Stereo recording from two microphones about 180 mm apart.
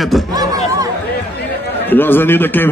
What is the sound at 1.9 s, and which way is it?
Speech, 10° left (ahead or behind).